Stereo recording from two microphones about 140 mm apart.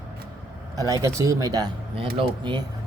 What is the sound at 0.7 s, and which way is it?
A woman's voice, 25° right (ahead or behind).